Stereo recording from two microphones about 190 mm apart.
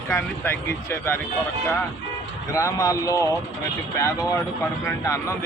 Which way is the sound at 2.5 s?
15° left (ahead or behind).